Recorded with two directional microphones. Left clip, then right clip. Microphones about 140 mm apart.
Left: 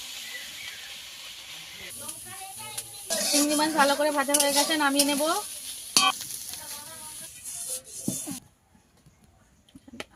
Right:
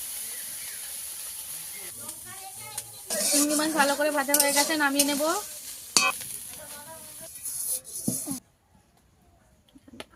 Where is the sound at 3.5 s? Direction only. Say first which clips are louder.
Left 2 dB; 15° left (ahead or behind).